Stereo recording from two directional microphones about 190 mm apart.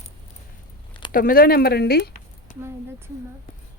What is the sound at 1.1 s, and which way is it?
Speech, 50° left (ahead or behind).